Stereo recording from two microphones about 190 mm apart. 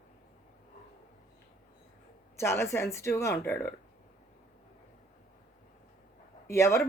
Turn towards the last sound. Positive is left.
turn(degrees=15)  # may be behind; listen again after turning